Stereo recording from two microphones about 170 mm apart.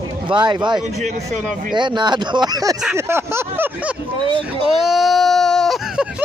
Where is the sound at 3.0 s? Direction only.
15° right (ahead or behind).